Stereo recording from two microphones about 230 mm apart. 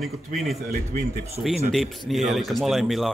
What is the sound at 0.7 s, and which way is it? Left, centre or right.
Speech, right.